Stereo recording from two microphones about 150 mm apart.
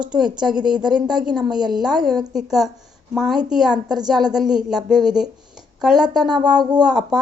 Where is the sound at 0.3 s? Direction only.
5° right (ahead or behind).